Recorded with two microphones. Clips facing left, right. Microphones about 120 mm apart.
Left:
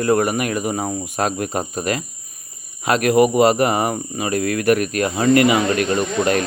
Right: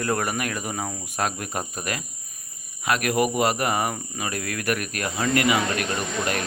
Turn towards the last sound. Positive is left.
turn(degrees=30)  # may be behind; listen again after turning